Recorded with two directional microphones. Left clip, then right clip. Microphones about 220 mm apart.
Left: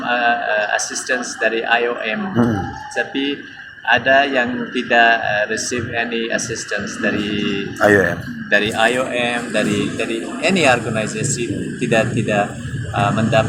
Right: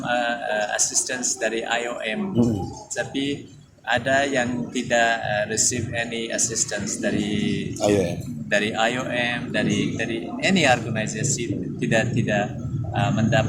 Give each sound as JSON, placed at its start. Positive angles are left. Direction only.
{"t": 0.1, "sound": "a man's voice", "side_deg": -55}
{"t": 7.8, "sound": "a man's voice", "side_deg": 0}
{"t": 8.4, "sound": "a man's voice", "side_deg": -55}